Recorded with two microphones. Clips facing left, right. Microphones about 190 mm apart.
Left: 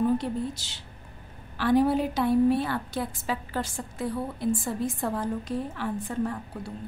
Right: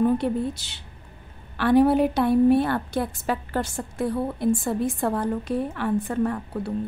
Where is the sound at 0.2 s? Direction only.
60° right (ahead or behind).